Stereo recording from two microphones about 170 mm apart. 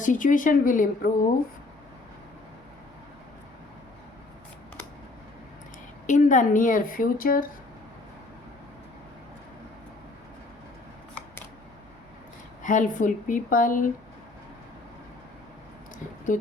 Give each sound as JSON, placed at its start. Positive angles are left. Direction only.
{"t": 0.0, "sound": "a woman's voice", "side_deg": 50}
{"t": 6.1, "sound": "a woman's voice", "side_deg": 45}
{"t": 12.6, "sound": "a woman's voice", "side_deg": 50}
{"t": 16.3, "sound": "a woman's voice", "side_deg": 50}